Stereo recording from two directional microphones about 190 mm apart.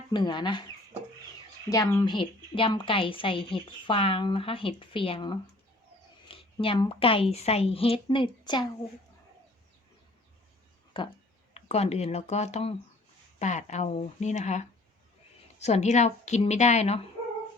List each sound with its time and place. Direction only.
0.1 s a woman's voice: 25° left (ahead or behind)
1.7 s a woman's voice: 15° left (ahead or behind)
10.9 s a woman's voice: 25° left (ahead or behind)